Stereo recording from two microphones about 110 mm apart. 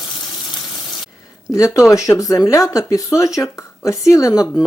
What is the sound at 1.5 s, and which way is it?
Speech, 30° left (ahead or behind).